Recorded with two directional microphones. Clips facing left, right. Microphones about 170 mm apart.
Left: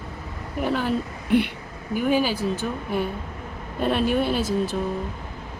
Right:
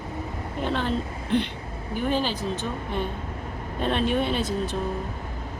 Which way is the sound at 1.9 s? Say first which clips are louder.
Left 4 dB; 10° left (ahead or behind).